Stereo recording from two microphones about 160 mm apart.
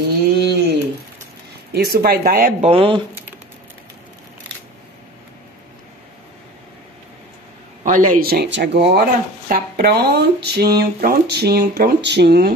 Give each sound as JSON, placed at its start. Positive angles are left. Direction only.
{"t": 0.4, "sound": "a sound", "side_deg": -90}
{"t": 1.7, "sound": "speech", "side_deg": -75}
{"t": 2.6, "sound": "speech", "side_deg": -35}
{"t": 7.8, "sound": "speech", "side_deg": -55}
{"t": 10.8, "sound": "speech", "side_deg": -70}